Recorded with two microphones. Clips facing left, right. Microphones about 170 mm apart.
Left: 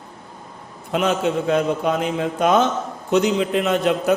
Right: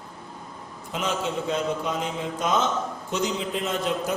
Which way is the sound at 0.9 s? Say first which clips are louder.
Left 8 dB; 60° left (ahead or behind).